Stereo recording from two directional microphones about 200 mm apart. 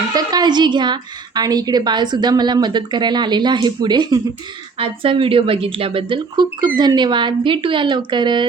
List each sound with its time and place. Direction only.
0.1 s a woman's voice: 20° right (ahead or behind)